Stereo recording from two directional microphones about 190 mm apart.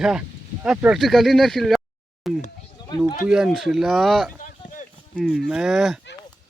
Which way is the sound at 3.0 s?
40° left (ahead or behind).